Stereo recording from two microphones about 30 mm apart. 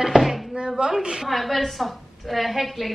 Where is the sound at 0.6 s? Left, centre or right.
Right.